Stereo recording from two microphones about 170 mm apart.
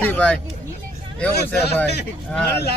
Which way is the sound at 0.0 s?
10° left (ahead or behind).